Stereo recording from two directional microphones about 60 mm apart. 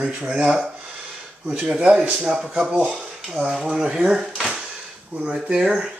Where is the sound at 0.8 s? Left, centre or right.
Centre.